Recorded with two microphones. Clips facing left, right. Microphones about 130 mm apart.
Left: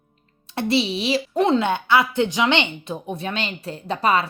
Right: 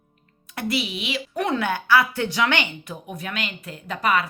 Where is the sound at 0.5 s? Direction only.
30° left (ahead or behind).